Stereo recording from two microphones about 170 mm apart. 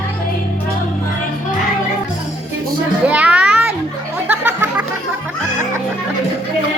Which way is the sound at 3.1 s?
5° right (ahead or behind).